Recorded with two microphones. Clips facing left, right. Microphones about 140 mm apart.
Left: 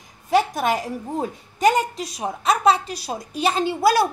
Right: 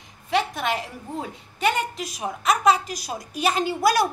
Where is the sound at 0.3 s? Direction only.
40° left (ahead or behind).